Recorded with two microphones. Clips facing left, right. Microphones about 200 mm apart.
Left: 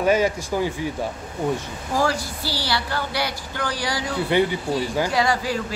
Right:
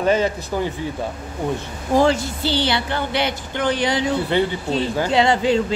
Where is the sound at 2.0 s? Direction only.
25° right (ahead or behind).